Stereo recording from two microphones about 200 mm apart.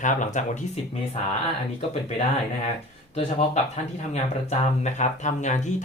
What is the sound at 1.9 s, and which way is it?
Speech, 30° left (ahead or behind).